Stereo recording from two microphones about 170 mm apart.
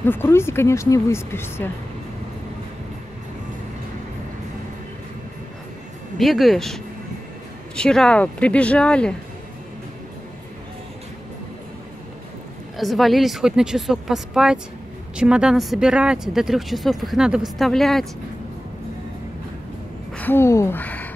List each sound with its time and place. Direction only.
0.0 s speech: 15° left (ahead or behind)
6.1 s speech: centre (ahead or behind)
12.7 s speech: centre (ahead or behind)
20.2 s speech: 15° left (ahead or behind)